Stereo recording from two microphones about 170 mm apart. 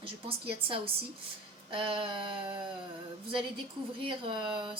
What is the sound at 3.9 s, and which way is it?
Speech, 30° right (ahead or behind).